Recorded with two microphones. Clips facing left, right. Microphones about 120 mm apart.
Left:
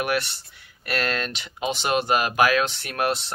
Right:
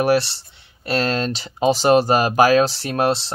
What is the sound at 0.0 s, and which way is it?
Speech, 30° right (ahead or behind).